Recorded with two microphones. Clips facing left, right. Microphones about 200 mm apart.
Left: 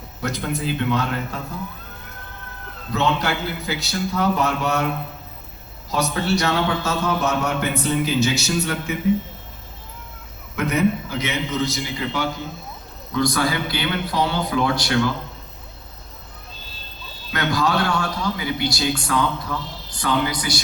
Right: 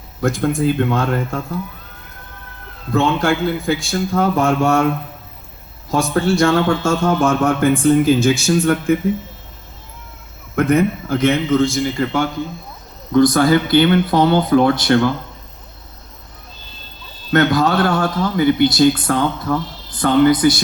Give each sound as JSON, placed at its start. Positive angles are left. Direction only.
{"t": 0.2, "sound": "a man's voice", "side_deg": -50}
{"t": 2.9, "sound": "a man's voice", "side_deg": -50}
{"t": 5.9, "sound": "a man's voice", "side_deg": -50}
{"t": 10.5, "sound": "a man's voice", "side_deg": -50}
{"t": 17.3, "sound": "a man's voice", "side_deg": -50}